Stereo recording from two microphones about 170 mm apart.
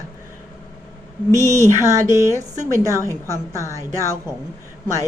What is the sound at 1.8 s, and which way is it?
A woman's voice, 20° right (ahead or behind).